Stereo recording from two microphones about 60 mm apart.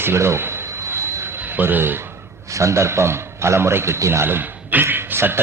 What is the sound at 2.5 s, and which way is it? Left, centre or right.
A man's voice, right.